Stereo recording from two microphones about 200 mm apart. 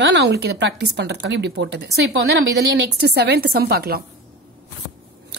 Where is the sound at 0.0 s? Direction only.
60° right (ahead or behind).